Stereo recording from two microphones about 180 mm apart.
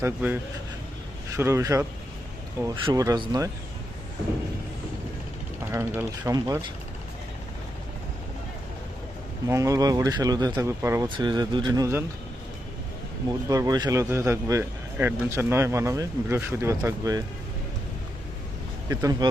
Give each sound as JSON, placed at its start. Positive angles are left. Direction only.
{"t": 0.0, "sound": "speech", "side_deg": -10}
{"t": 1.4, "sound": "speech", "side_deg": -15}
{"t": 5.7, "sound": "speech", "side_deg": -15}
{"t": 9.5, "sound": "speech", "side_deg": -15}
{"t": 13.5, "sound": "speech", "side_deg": -20}
{"t": 18.9, "sound": "speech", "side_deg": -20}